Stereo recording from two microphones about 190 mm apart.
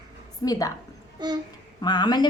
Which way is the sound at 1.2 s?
20° right (ahead or behind).